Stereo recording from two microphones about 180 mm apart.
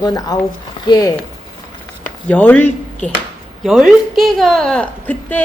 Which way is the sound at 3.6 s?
Centre (ahead or behind).